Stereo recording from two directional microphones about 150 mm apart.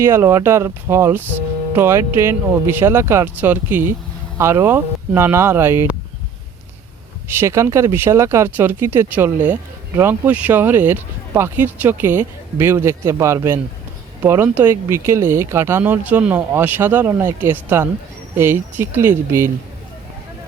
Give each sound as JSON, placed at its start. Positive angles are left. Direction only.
{"t": 0.0, "sound": "speech", "side_deg": -15}
{"t": 7.3, "sound": "speech", "side_deg": -20}